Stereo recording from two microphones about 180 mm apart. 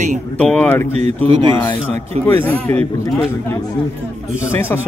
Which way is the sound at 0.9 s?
35° right (ahead or behind).